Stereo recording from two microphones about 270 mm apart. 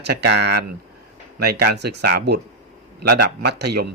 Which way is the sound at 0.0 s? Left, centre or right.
Right.